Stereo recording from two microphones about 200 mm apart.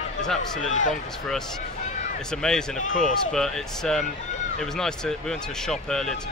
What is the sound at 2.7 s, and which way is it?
Speech, 40° left (ahead or behind).